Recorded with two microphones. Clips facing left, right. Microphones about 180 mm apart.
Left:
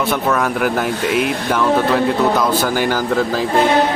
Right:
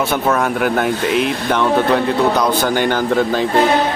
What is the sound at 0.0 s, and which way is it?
Speech, centre (ahead or behind).